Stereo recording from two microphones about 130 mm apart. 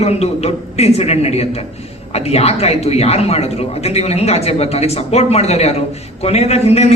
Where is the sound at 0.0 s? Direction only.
55° left (ahead or behind).